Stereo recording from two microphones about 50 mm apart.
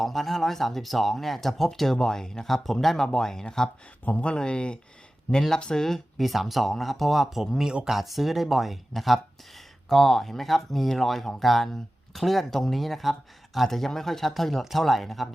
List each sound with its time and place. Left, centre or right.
0.0 s speech: centre
4.0 s speech: left
5.3 s speech: centre
5.8 s speech: centre